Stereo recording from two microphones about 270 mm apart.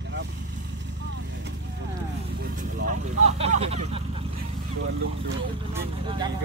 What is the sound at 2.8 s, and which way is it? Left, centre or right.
Speech, right.